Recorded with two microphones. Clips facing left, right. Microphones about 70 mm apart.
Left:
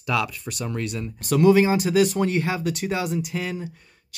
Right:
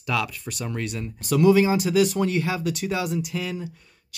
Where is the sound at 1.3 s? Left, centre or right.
Left.